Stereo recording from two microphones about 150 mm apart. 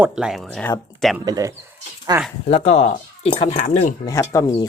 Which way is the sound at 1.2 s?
25° right (ahead or behind).